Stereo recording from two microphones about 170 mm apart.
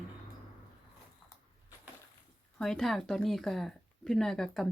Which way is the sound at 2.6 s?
Centre (ahead or behind).